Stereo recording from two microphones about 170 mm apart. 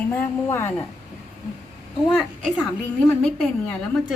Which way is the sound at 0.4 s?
15° left (ahead or behind).